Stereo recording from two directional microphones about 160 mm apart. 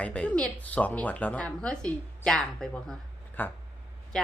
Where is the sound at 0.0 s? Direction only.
10° left (ahead or behind).